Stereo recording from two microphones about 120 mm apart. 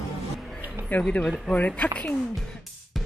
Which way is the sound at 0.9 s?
15° left (ahead or behind).